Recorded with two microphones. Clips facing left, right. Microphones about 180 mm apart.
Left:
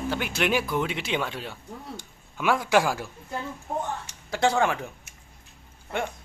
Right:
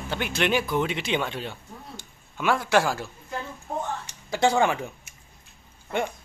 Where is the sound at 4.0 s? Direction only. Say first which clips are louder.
Right 3 dB; centre (ahead or behind).